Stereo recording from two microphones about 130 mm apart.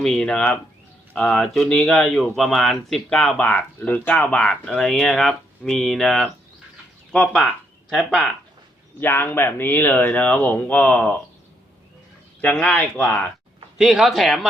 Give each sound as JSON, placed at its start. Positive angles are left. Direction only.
{"t": 0.0, "sound": "speech", "side_deg": 5}
{"t": 9.0, "sound": "speech", "side_deg": 15}
{"t": 12.4, "sound": "speech", "side_deg": 10}
{"t": 13.7, "sound": "speech", "side_deg": -5}